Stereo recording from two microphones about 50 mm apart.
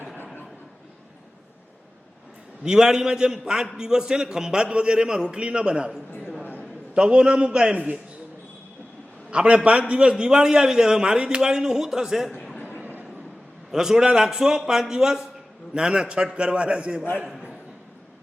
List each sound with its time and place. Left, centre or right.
2.6 s a man's voice: centre
9.3 s a man's voice: centre
12.8 s train: right
13.7 s a man's voice: centre